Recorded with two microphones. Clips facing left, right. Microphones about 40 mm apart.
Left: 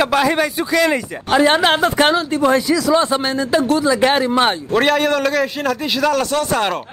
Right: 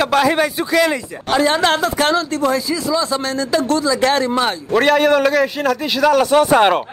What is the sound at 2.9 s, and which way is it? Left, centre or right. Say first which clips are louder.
Speech: left 3 dB; left.